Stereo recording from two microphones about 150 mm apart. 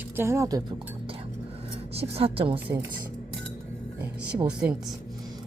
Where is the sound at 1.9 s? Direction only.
40° right (ahead or behind).